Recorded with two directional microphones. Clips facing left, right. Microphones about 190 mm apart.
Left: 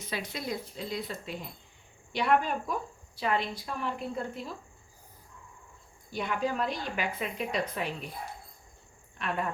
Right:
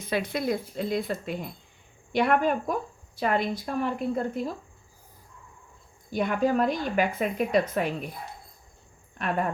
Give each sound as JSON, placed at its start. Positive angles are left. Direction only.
{"t": 0.0, "sound": "a woman's voice", "side_deg": -55}
{"t": 6.1, "sound": "a woman's voice", "side_deg": -50}
{"t": 9.1, "sound": "speech", "side_deg": -50}